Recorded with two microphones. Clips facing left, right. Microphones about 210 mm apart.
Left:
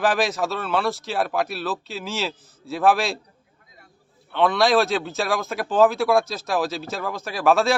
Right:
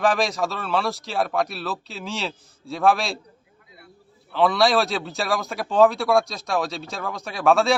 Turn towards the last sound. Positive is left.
turn(degrees=0)  # may be behind; listen again after turning